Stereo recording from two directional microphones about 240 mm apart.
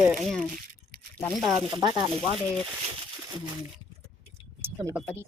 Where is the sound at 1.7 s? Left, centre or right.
Centre.